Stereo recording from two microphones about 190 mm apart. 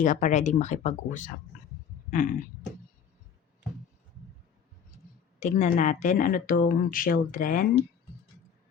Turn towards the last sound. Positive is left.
turn(degrees=45)  # may be behind; listen again after turning